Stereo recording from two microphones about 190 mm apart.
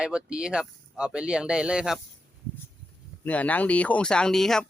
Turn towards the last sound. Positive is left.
turn(degrees=0)  # may be behind; listen again after turning